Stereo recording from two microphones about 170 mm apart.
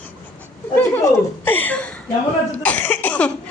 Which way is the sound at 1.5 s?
10° left (ahead or behind).